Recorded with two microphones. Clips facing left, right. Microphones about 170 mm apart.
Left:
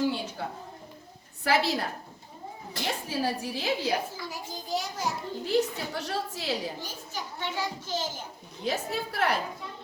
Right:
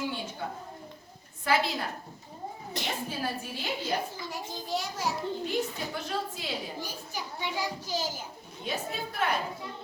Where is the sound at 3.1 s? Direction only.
85° left.